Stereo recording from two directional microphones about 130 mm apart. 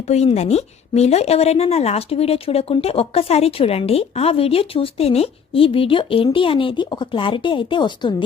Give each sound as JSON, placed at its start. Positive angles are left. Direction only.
{"t": 0.1, "sound": "a woman's voice", "side_deg": 55}